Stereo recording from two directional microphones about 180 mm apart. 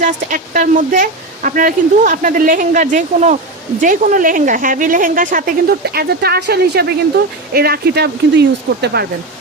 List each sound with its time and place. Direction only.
0.0 s speech: 50° right (ahead or behind); by 9.0 s 65° right (ahead or behind)